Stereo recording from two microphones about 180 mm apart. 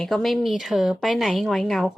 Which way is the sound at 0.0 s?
Centre (ahead or behind).